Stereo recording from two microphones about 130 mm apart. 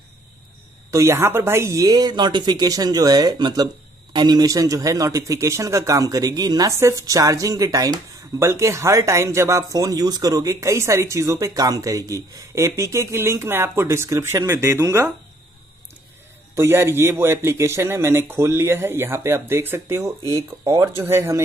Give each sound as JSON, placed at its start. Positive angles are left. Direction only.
{"t": 0.9, "sound": "a man's voice", "side_deg": -20}
{"t": 16.5, "sound": "a man's voice", "side_deg": -20}